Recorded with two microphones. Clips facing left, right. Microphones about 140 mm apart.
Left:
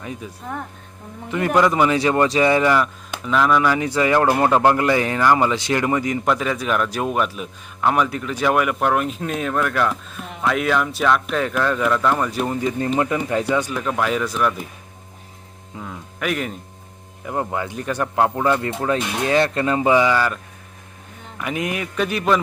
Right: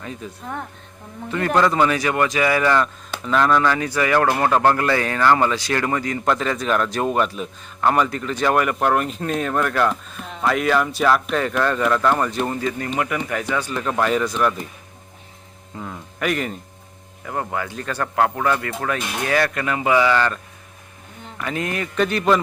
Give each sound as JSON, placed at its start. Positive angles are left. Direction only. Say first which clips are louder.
{"t": 0.0, "sound": "speech", "louder": "left 1 dB", "side_deg": 10}
{"t": 2.0, "sound": "speech", "louder": "left 3 dB", "side_deg": 25}
{"t": 2.7, "sound": "speech", "louder": "even", "side_deg": 10}
{"t": 3.8, "sound": "speech", "louder": "left 1 dB", "side_deg": 20}
{"t": 13.1, "sound": "speech", "louder": "left 3 dB", "side_deg": 25}
{"t": 13.7, "sound": "speech", "louder": "right 1 dB", "side_deg": 5}
{"t": 15.8, "sound": "speech", "louder": "right 1 dB", "side_deg": 0}
{"t": 17.2, "sound": "speech", "louder": "left 2 dB", "side_deg": 20}
{"t": 21.4, "sound": "speech", "louder": "left 1 dB", "side_deg": 15}